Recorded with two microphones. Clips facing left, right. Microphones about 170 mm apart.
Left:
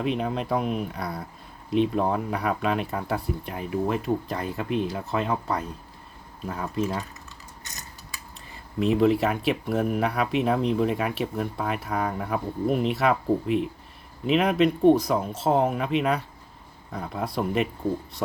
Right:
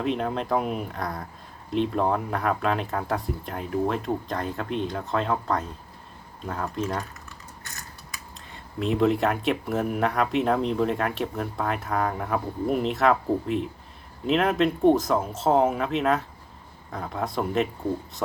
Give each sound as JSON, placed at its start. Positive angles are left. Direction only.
{"t": 0.0, "sound": "speech", "side_deg": 0}
{"t": 7.6, "sound": "mechanisms", "side_deg": 20}
{"t": 8.5, "sound": "speech", "side_deg": 0}